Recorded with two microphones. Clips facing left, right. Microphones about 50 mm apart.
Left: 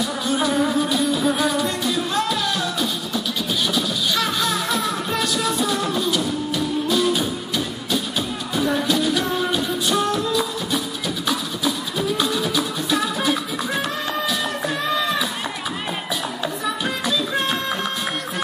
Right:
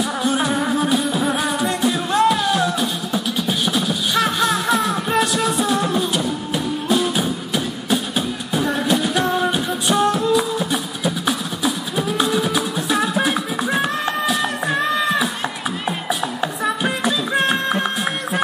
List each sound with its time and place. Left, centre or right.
0.0 s music: right
16.6 s music: right